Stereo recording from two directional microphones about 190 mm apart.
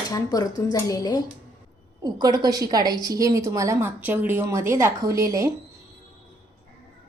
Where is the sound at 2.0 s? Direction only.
20° right (ahead or behind).